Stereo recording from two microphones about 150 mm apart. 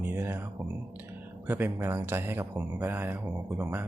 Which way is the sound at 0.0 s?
15° right (ahead or behind).